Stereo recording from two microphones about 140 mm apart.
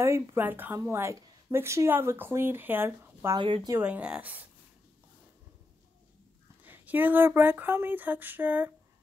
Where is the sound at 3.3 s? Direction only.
35° right (ahead or behind).